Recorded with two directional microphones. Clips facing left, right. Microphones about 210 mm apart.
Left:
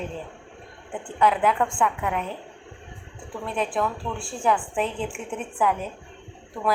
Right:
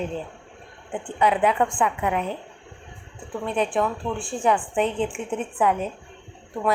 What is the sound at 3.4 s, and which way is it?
Speech, 35° right (ahead or behind).